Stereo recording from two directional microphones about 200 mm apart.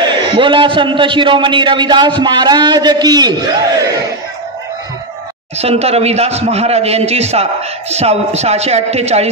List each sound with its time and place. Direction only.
0.1 s a man's voice: 25° right (ahead or behind)
5.6 s a man's voice: 30° right (ahead or behind)